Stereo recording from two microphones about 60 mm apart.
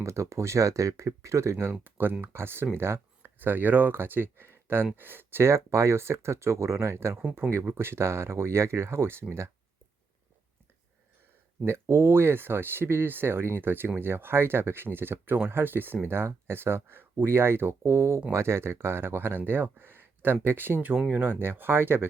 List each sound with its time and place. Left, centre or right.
0.0 s speech: right
1.8 s speech: right
2.7 s a sound: right
3.3 s speech: right
11.6 s speech: right